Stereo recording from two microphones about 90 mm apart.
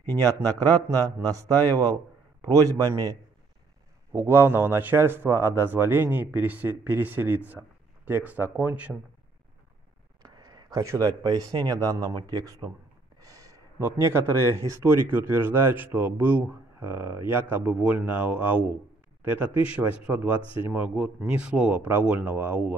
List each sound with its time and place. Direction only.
0.2 s a man's voice: 40° right (ahead or behind)
4.1 s a man's voice: 25° right (ahead or behind)
10.2 s a sound: 45° right (ahead or behind)
10.9 s speech: 45° right (ahead or behind)
13.2 s a sound: 40° right (ahead or behind)
13.7 s a man's voice: 25° right (ahead or behind)